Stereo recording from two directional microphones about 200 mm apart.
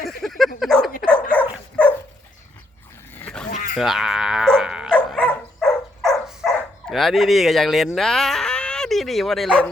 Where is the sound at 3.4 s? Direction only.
40° left (ahead or behind).